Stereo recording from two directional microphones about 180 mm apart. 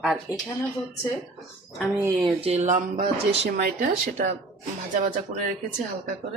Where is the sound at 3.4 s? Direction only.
55° right (ahead or behind).